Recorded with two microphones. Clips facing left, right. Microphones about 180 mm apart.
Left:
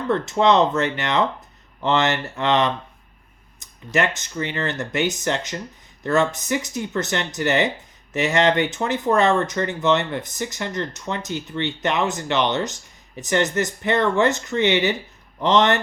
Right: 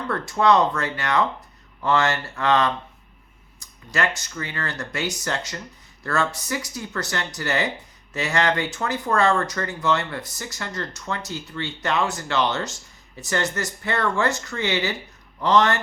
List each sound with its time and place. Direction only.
0.1 s speech: 20° left (ahead or behind)